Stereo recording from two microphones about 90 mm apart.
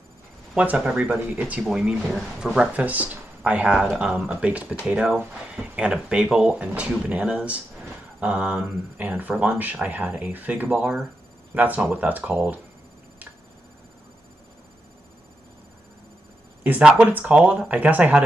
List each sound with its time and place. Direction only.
0.6 s speech: 10° right (ahead or behind)
2.7 s speech: 20° right (ahead or behind)
16.6 s speech: 20° right (ahead or behind)